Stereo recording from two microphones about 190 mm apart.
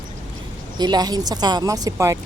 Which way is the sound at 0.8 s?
20° right (ahead or behind).